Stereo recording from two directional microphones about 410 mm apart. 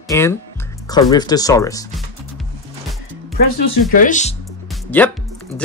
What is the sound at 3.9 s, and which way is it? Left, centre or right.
Speech, centre.